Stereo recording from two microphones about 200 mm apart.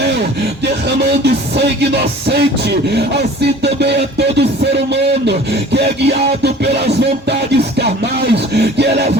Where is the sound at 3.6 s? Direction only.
55° right (ahead or behind).